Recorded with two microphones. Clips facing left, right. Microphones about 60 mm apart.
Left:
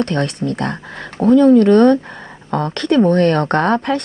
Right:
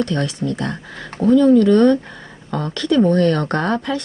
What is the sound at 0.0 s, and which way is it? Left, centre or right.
Speech, left.